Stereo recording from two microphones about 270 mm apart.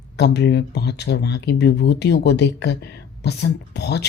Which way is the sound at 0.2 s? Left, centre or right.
Left.